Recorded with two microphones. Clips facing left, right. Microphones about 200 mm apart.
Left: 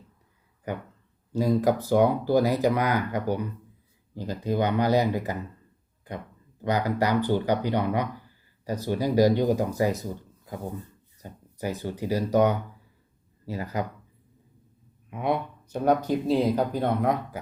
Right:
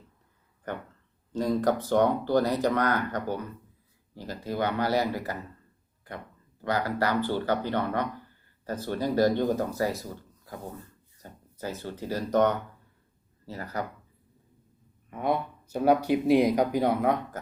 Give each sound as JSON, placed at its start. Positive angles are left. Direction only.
{"t": 1.3, "sound": "speech", "side_deg": 10}
{"t": 6.6, "sound": "speech", "side_deg": 15}
{"t": 15.1, "sound": "speech", "side_deg": 0}